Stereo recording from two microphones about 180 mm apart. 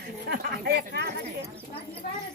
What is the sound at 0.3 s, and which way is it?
Speech, 65° right (ahead or behind).